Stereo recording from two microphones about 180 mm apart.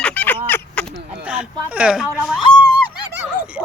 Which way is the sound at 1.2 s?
5° right (ahead or behind).